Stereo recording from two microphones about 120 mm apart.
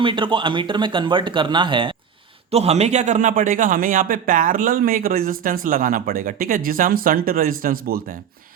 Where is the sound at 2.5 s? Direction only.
60° right (ahead or behind); by 4.4 s 90° right.